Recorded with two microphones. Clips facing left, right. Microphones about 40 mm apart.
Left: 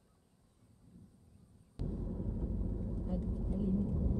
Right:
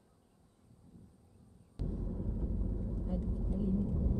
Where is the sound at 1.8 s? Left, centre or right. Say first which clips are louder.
Even; centre.